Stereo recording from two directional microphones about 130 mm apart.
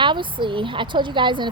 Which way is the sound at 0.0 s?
40° right (ahead or behind).